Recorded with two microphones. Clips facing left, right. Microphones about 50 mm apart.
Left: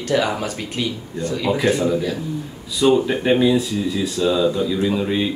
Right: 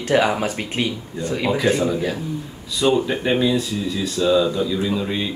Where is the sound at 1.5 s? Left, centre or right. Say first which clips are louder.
Left 1 dB; centre.